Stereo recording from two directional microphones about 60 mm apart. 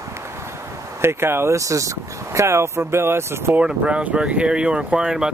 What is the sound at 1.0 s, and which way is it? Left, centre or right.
Speech, right.